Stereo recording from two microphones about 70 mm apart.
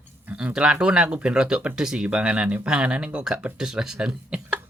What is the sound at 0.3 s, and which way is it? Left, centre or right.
Speech, centre.